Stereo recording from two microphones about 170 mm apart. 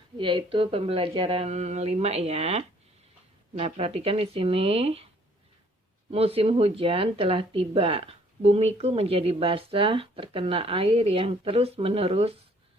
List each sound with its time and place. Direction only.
0.2 s speech: 30° right (ahead or behind)
6.1 s speech: 35° right (ahead or behind)